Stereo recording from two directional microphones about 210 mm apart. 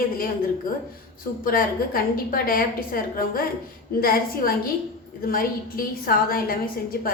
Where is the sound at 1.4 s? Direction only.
40° left (ahead or behind).